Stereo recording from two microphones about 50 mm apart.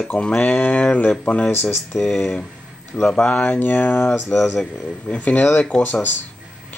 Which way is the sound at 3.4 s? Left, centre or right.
Left.